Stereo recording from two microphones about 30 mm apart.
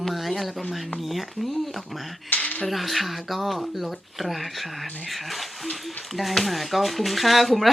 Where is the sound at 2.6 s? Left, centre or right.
Centre.